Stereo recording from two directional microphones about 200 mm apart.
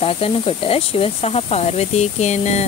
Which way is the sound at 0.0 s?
30° left (ahead or behind).